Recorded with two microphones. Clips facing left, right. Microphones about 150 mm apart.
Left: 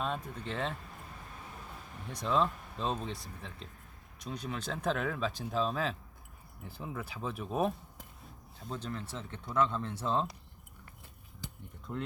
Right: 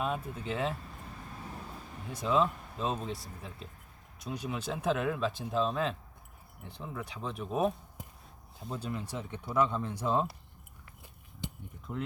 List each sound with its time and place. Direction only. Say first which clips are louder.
0.0 s speech: right 2 dB; 5° right (ahead or behind)
2.0 s speech: right 2 dB; 5° right (ahead or behind)
11.4 s a sound: right 6 dB; 25° right (ahead or behind)
11.9 s speech: right 1 dB; 5° right (ahead or behind)